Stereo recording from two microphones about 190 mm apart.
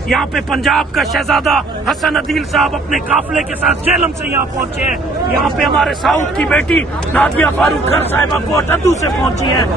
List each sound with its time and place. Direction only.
0.1 s speech: centre (ahead or behind)
5.6 s speech: centre (ahead or behind)
9.4 s speech: 25° left (ahead or behind)